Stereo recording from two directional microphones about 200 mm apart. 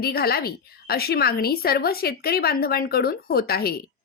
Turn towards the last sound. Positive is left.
turn(degrees=50)  # may be behind; listen again after turning